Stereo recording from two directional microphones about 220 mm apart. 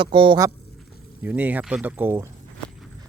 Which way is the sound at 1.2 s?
10° right (ahead or behind).